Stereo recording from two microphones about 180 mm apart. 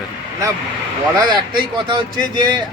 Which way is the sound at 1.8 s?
25° right (ahead or behind).